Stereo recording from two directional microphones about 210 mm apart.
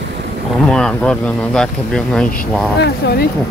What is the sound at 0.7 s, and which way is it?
Speech, 5° left (ahead or behind).